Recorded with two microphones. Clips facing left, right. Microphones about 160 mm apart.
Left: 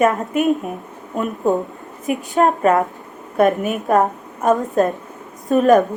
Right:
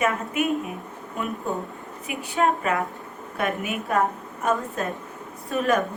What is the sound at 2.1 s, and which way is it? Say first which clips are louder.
Speech: left 7 dB; 40° left (ahead or behind).